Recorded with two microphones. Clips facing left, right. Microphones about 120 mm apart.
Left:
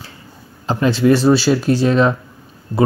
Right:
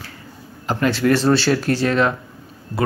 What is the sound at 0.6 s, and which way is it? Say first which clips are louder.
A man's voice: left 4 dB; 20° left (ahead or behind).